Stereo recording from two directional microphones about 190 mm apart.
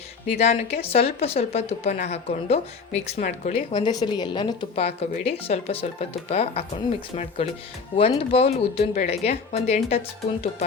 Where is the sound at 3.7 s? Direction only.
20° left (ahead or behind).